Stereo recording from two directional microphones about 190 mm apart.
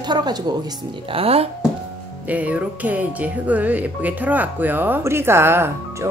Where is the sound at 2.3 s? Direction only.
10° right (ahead or behind).